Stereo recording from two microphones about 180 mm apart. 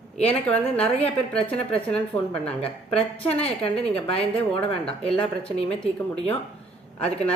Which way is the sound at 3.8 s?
35° left (ahead or behind).